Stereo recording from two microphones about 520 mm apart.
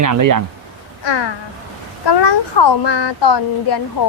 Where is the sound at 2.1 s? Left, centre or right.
Left.